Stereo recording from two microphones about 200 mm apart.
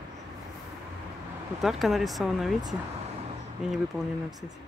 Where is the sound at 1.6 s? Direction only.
Centre (ahead or behind).